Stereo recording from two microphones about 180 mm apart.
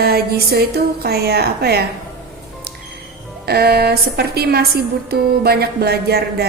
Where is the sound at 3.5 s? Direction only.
60° right (ahead or behind).